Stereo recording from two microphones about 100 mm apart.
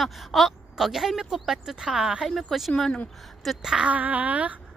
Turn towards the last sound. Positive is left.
turn(degrees=-15)  # may be behind; listen again after turning